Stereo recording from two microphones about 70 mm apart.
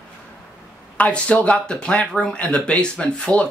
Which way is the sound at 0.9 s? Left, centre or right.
Centre.